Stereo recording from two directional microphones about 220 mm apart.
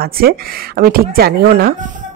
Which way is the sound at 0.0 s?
45° right (ahead or behind).